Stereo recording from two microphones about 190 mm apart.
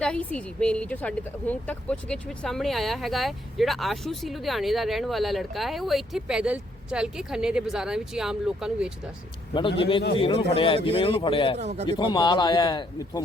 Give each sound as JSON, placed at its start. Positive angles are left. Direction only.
{"t": 0.0, "sound": "speech", "side_deg": 5}
{"t": 9.6, "sound": "speech", "side_deg": 25}
{"t": 11.5, "sound": "speech", "side_deg": -35}
{"t": 11.9, "sound": "speech", "side_deg": 25}